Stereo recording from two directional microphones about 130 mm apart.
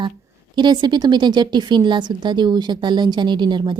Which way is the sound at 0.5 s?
35° right (ahead or behind).